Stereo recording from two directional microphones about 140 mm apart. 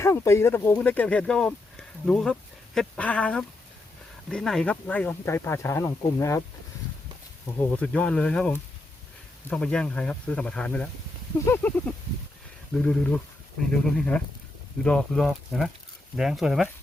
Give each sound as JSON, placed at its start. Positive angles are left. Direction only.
{"t": 0.0, "sound": "speech", "side_deg": 20}
{"t": 7.8, "sound": "speech", "side_deg": 10}
{"t": 11.3, "sound": "speech", "side_deg": 15}